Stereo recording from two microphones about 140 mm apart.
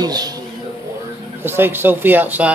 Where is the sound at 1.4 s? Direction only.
15° right (ahead or behind).